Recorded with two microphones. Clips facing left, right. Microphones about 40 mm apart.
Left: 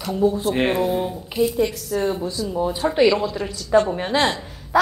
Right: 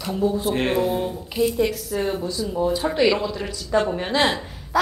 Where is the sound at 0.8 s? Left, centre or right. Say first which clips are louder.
Left 1 dB; centre.